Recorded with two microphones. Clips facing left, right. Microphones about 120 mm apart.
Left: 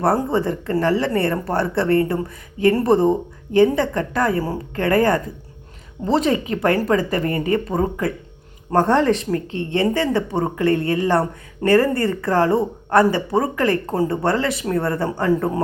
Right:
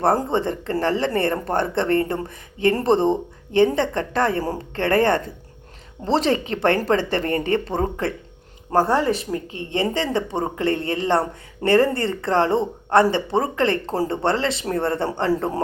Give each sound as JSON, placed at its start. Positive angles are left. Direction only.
{"t": 0.3, "sound": "speech", "side_deg": -25}
{"t": 8.9, "sound": "speech", "side_deg": -10}